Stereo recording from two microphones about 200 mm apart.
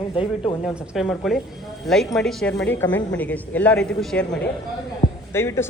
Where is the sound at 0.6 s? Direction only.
5° right (ahead or behind).